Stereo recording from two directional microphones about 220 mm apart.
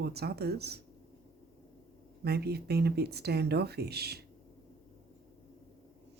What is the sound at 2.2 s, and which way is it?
Speech, 45° right (ahead or behind).